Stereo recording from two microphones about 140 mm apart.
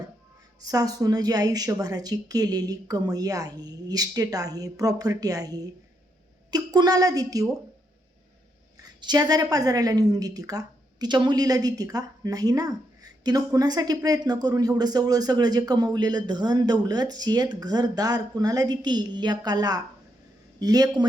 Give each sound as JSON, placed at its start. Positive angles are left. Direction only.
{"t": 0.6, "sound": "a woman's voice", "side_deg": -25}
{"t": 8.8, "sound": "a woman's voice", "side_deg": -30}